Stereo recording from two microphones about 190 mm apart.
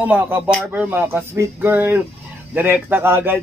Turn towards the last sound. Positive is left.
turn(degrees=-10)  # may be behind; listen again after turning